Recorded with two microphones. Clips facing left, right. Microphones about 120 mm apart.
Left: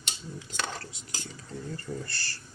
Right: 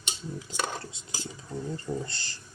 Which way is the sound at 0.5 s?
10° right (ahead or behind).